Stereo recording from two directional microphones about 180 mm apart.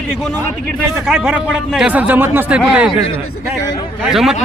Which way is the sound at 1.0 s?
5° right (ahead or behind).